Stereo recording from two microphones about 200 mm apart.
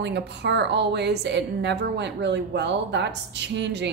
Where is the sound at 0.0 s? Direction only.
60° right (ahead or behind).